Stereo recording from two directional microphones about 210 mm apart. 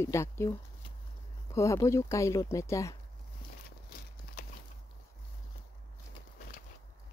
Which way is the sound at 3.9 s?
50° left (ahead or behind).